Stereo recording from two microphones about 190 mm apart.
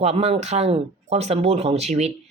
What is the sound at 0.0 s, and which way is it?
Speech, 35° right (ahead or behind).